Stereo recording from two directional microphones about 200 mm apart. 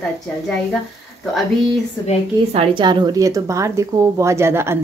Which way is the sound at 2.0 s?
20° left (ahead or behind).